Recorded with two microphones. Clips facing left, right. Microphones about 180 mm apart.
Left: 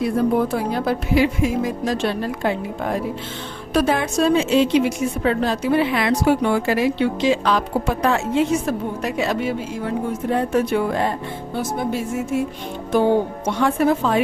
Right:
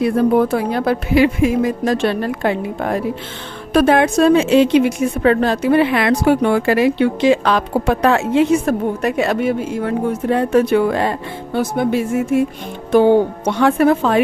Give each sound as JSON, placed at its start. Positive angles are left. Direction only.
{"t": 0.0, "sound": "a woman's voice", "side_deg": -65}
{"t": 13.5, "sound": "a woman's voice", "side_deg": -70}